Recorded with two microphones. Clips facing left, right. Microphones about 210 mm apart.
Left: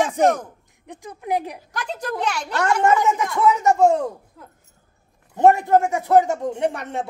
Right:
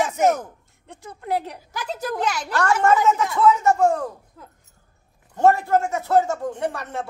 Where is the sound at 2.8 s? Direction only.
15° left (ahead or behind).